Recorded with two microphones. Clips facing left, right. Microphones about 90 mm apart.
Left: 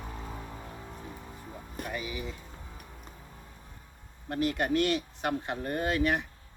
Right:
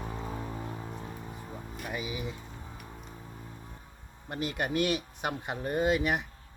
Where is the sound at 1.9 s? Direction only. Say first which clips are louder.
Right 2 dB; 15° right (ahead or behind).